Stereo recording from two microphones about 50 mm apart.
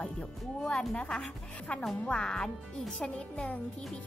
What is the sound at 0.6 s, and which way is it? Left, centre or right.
Speech, centre.